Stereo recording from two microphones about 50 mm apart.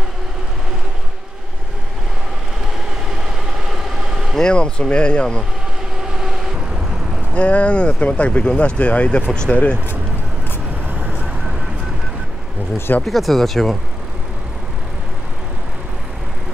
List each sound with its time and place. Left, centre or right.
3.1 s vehicle: centre
4.4 s speech: centre
6.1 s train: centre
7.3 s speech: left
10.9 s vehicle: right
13.0 s speech: centre